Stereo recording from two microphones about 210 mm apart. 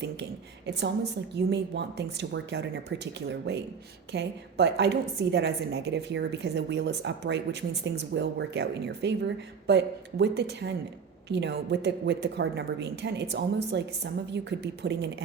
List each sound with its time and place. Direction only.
1.4 s a woman's voice: 55° right (ahead or behind)